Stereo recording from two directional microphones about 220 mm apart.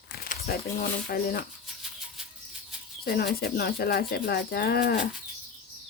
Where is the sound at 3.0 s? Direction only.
45° left (ahead or behind).